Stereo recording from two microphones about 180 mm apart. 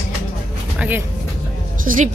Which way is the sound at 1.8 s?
50° right (ahead or behind).